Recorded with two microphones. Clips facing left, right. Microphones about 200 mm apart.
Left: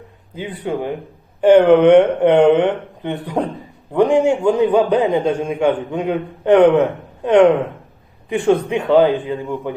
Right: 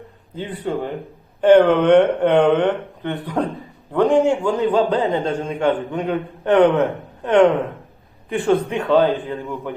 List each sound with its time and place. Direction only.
0.3 s a man's voice: 10° left (ahead or behind)